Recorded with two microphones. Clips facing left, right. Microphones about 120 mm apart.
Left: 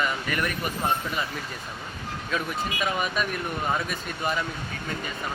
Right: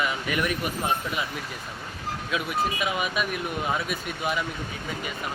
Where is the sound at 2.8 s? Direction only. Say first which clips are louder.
Even; 5° right (ahead or behind).